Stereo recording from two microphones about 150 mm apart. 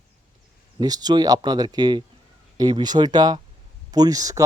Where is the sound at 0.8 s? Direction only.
25° right (ahead or behind).